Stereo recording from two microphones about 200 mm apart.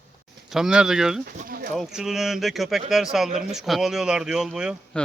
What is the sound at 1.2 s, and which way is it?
Speech, 45° right (ahead or behind).